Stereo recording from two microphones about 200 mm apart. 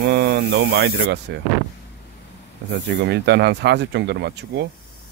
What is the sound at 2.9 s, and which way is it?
Speech, 60° right (ahead or behind).